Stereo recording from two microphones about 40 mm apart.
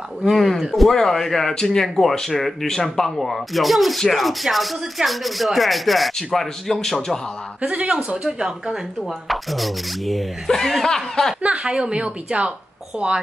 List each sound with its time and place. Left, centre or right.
0.2 s speech: centre
7.6 s speech: right
8.2 s a woman's voice: centre
9.0 s speech: centre
11.4 s speech: centre